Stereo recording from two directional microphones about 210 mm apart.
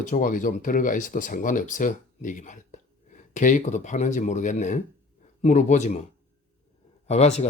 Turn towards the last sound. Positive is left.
turn(degrees=30)  # may be behind; listen again after turning